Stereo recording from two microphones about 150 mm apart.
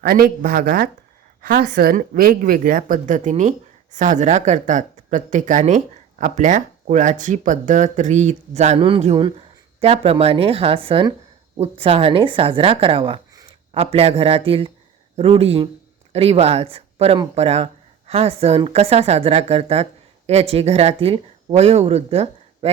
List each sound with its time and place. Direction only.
0.0 s a woman's voice: 75° right (ahead or behind); by 22.7 s 40° right (ahead or behind)